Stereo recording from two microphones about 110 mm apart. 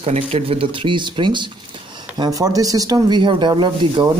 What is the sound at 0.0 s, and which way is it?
Speech, 65° right (ahead or behind).